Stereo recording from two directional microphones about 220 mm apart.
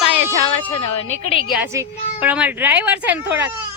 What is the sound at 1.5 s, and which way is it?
Speech, 10° right (ahead or behind).